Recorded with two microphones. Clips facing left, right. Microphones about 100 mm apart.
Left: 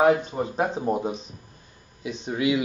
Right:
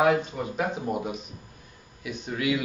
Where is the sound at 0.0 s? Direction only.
30° left (ahead or behind).